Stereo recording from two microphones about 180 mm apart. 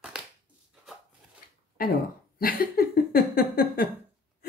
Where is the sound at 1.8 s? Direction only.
55° left (ahead or behind).